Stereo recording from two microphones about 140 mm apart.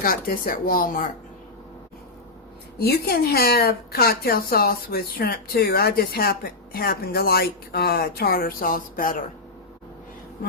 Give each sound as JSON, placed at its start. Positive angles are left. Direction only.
{"t": 0.0, "sound": "speech", "side_deg": 90}
{"t": 2.8, "sound": "speech", "side_deg": 90}